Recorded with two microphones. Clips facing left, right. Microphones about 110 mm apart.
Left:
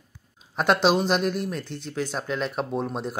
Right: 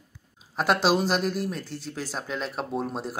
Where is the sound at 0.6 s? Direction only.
Centre (ahead or behind).